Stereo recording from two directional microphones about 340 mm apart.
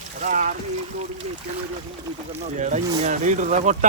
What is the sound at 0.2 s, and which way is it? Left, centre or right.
Speech, right.